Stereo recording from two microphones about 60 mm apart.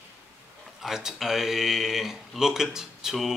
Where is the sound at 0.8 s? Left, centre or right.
Centre.